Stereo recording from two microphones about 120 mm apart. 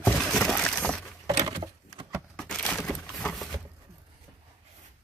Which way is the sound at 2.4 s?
5° left (ahead or behind).